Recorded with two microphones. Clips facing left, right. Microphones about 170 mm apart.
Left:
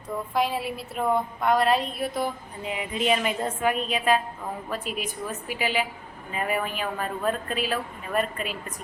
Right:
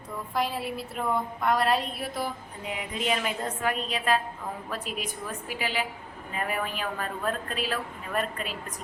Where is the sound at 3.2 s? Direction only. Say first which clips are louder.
Left 4 dB; 10° left (ahead or behind).